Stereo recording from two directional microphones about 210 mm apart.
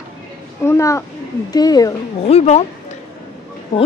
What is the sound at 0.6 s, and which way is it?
A child's voice, 15° left (ahead or behind).